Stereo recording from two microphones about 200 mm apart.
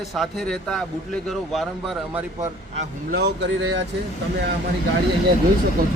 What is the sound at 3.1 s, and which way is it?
Speech, 55° right (ahead or behind).